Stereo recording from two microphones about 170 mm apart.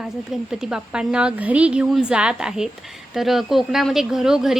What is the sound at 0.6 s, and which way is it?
Speech, 5° right (ahead or behind).